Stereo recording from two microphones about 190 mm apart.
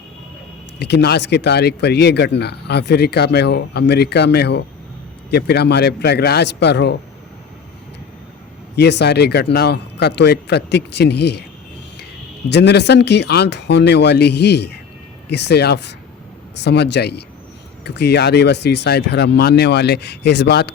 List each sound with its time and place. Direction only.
0.8 s speech: 60° left (ahead or behind)
8.7 s speech: 60° left (ahead or behind)
12.5 s speech: 65° left (ahead or behind)